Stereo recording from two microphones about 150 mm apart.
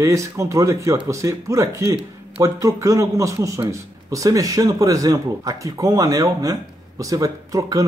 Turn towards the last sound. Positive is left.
turn(degrees=-20)  # may be behind; listen again after turning